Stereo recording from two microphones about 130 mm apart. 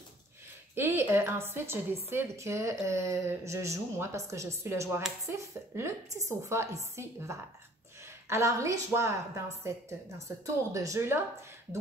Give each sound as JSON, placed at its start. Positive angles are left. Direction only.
{"t": 0.7, "sound": "a woman's voice", "side_deg": -20}